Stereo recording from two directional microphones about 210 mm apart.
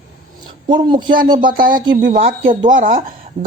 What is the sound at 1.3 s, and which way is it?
Speech, 40° right (ahead or behind).